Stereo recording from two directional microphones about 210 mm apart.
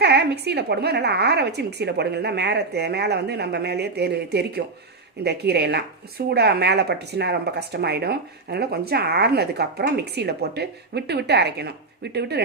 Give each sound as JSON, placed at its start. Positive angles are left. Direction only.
{"t": 0.0, "sound": "speech", "side_deg": -50}